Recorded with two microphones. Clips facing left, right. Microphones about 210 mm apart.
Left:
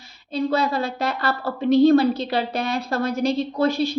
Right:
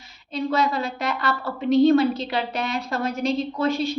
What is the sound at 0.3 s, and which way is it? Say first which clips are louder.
A woman's voice: left 1 dB; 35° left (ahead or behind).